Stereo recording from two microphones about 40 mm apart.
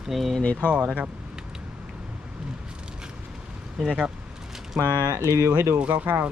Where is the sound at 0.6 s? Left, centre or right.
Right.